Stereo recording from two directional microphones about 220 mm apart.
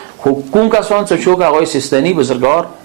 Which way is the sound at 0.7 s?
25° right (ahead or behind).